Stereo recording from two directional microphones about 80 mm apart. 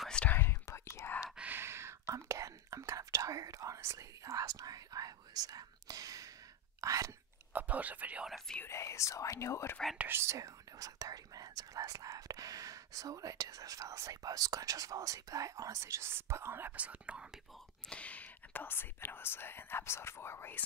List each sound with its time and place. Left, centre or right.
0.1 s whispering: centre
0.4 s whispering: left
1.3 s sigh: centre
1.6 s whispering: right
6.8 s speech: right
7.5 s speech: centre
8.6 s speech: left
9.9 s speech: right
17.8 s speech: centre